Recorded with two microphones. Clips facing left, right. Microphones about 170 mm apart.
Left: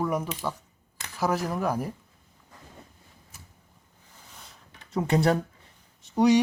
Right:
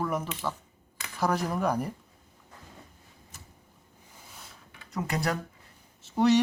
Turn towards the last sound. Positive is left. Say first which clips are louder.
# left 2 dB
turn(degrees=15)  # may be behind; listen again after turning